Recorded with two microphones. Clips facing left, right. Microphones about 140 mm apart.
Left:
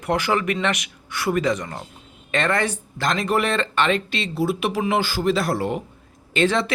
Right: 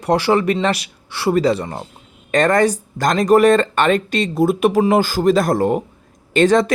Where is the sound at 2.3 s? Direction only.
40° right (ahead or behind).